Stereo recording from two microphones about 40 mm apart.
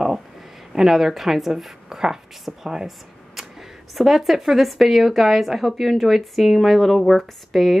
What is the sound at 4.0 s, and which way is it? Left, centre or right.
Speech, centre.